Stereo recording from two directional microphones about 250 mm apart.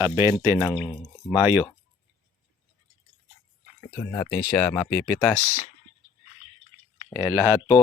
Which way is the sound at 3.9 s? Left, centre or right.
Centre.